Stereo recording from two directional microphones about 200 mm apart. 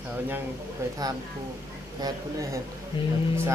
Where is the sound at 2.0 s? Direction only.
15° right (ahead or behind).